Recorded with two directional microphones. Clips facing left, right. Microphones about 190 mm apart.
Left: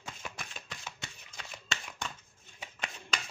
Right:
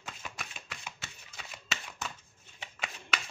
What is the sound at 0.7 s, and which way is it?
Shuffling cards, 5° right (ahead or behind).